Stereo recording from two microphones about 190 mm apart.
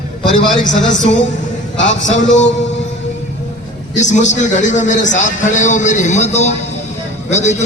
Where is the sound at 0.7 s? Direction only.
75° left (ahead or behind).